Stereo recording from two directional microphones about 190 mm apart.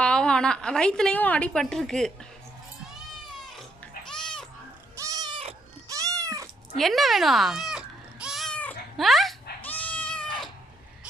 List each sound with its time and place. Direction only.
0.0 s a woman's voice: 5° left (ahead or behind)
4.1 s goat: 5° left (ahead or behind)
4.9 s cat: 20° right (ahead or behind)
5.9 s cat: 15° right (ahead or behind)
6.7 s cat: centre (ahead or behind)